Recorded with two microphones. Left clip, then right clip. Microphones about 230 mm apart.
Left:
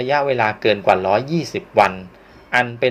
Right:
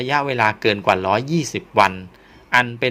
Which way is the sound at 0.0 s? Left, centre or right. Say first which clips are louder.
Left 1 dB; right.